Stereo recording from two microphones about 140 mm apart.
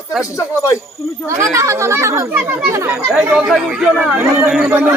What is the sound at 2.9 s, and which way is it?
A man's voice, 5° right (ahead or behind).